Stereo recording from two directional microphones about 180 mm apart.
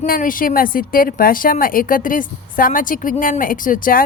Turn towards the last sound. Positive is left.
turn(degrees=50)  # may be behind; listen again after turning